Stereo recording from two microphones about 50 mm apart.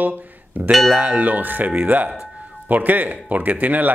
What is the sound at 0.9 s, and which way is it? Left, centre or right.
Speech, right.